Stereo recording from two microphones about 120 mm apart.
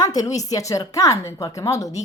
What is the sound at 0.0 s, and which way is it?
A woman's voice, 30° left (ahead or behind).